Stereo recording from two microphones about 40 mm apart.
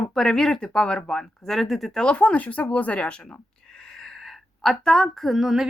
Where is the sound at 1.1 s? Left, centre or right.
Centre.